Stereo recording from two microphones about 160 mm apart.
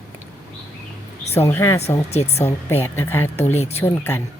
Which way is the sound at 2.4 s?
15° left (ahead or behind).